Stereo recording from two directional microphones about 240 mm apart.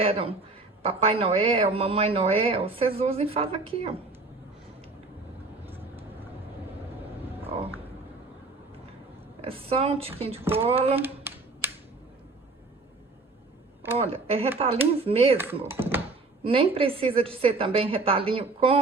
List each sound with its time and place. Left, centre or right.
0.0 s speech: right
5.6 s vehicle: centre
9.4 s speech: right
10.9 s a sound: centre
13.9 s speech: right
15.4 s speech: centre
16.4 s speech: right